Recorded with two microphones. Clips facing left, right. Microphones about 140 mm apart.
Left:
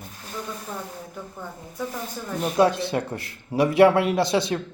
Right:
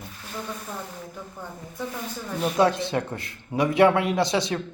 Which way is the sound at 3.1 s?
20° right (ahead or behind).